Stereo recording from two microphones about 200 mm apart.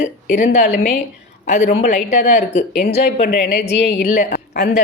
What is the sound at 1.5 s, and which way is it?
Speech, 35° left (ahead or behind).